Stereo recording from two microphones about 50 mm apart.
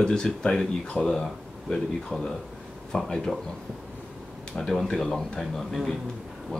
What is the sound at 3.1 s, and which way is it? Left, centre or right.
Speech, centre.